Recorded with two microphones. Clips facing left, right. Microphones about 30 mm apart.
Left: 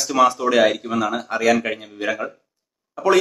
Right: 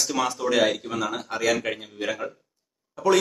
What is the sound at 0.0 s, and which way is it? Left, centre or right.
Speech, centre.